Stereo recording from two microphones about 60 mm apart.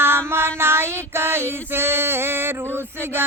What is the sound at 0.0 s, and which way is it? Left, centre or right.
Female singing, right.